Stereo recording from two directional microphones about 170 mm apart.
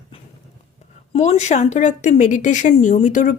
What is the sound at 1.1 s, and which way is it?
Speech, 40° left (ahead or behind).